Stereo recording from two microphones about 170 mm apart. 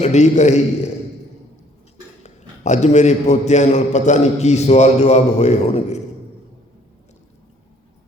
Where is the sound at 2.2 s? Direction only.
45° left (ahead or behind).